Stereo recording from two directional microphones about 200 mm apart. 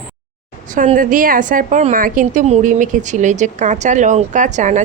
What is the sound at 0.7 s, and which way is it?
A woman's voice, 40° right (ahead or behind).